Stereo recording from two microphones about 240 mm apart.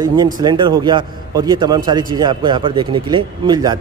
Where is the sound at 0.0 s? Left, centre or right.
Centre.